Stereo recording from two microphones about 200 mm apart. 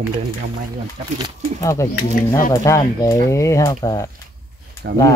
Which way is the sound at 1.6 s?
15° left (ahead or behind).